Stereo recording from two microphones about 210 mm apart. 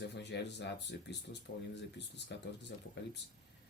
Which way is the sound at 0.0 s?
55° left (ahead or behind).